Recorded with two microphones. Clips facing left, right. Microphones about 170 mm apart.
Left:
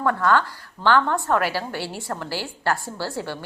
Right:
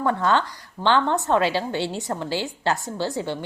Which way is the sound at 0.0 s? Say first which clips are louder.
Left 1 dB; 20° right (ahead or behind).